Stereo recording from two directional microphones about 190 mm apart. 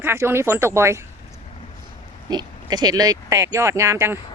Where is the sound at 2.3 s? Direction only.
20° right (ahead or behind).